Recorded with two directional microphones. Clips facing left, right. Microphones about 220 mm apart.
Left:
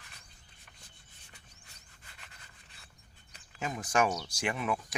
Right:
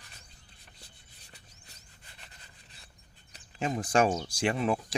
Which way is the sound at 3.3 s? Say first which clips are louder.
Right 6 dB; 30° right (ahead or behind).